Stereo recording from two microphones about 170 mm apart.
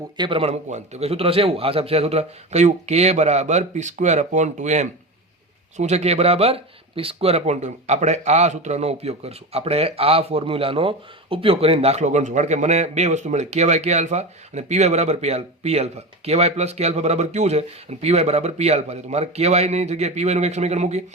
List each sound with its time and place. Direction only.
0.2 s speech: 35° right (ahead or behind)